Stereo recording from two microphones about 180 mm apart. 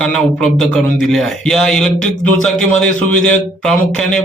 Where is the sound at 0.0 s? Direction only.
5° left (ahead or behind).